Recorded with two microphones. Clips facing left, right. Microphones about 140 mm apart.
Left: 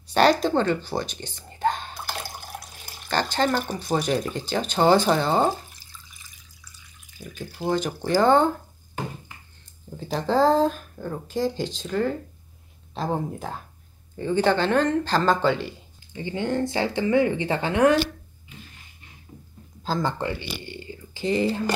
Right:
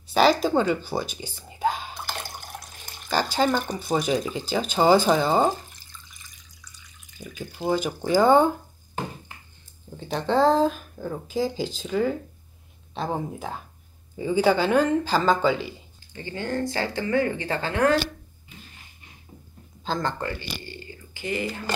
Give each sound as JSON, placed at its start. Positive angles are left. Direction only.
{"t": 0.1, "sound": "speech", "side_deg": 0}
{"t": 9.9, "sound": "speech", "side_deg": 0}
{"t": 16.1, "sound": "speech", "side_deg": 15}
{"t": 19.8, "sound": "speech", "side_deg": 5}
{"t": 20.2, "sound": "speech", "side_deg": 20}